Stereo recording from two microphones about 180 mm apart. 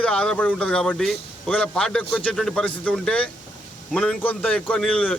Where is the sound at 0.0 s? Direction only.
5° left (ahead or behind).